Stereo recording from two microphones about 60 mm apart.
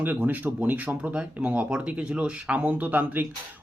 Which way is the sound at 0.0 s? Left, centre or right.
Right.